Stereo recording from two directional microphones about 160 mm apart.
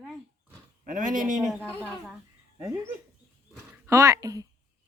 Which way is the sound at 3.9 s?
20° right (ahead or behind).